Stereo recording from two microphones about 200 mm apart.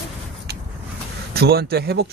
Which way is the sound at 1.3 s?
50° right (ahead or behind).